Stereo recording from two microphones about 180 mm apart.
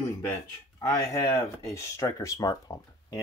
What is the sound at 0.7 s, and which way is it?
Speech, 20° left (ahead or behind).